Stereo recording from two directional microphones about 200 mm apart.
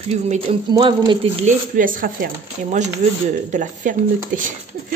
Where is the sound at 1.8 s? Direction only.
45° right (ahead or behind).